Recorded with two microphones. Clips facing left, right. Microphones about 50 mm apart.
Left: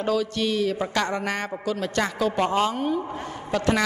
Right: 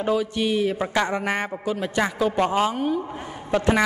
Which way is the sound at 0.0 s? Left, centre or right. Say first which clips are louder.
Right 1 dB; centre.